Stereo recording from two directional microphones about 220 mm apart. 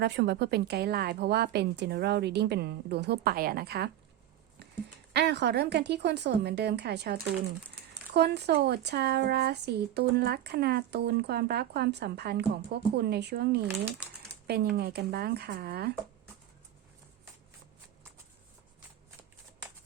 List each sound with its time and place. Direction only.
0.0 s speech: 50° right (ahead or behind)
5.1 s speech: 50° right (ahead or behind)